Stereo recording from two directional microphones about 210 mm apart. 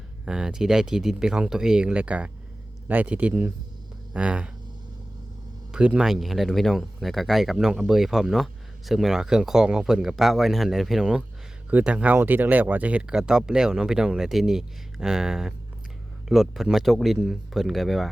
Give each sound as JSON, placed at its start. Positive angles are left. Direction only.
{"t": 0.3, "sound": "speech", "side_deg": -5}
{"t": 5.7, "sound": "speech", "side_deg": -5}